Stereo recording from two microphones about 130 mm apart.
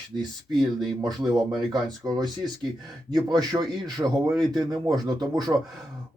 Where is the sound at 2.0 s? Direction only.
25° right (ahead or behind).